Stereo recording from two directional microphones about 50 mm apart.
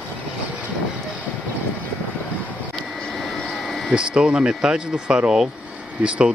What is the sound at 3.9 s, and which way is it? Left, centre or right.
Speech, centre.